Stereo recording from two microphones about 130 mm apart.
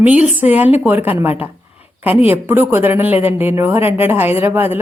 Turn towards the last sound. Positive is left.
turn(degrees=-15)  # may be behind; listen again after turning